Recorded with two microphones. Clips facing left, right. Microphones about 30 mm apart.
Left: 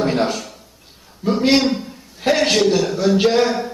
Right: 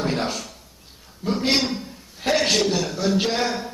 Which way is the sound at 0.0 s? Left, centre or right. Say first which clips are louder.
Left 6 dB; centre.